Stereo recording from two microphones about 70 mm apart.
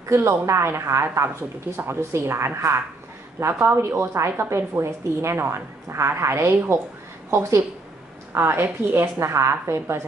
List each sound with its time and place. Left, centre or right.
0.1 s a woman's voice: right
8.4 s a woman's voice: right